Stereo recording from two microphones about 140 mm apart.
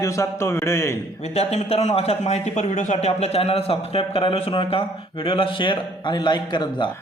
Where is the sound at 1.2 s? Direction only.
50° left (ahead or behind); by 6.9 s 35° left (ahead or behind).